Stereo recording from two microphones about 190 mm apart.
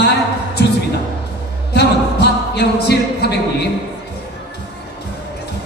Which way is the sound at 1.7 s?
60° left (ahead or behind).